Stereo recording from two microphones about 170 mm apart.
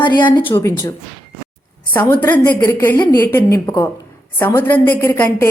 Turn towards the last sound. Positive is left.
turn(degrees=15)  # may be behind; listen again after turning